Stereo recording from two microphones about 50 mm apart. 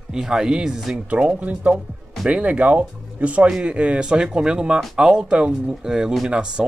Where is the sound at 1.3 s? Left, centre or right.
Right.